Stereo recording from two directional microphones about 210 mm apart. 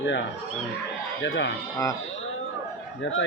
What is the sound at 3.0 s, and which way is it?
Speech, 65° left (ahead or behind).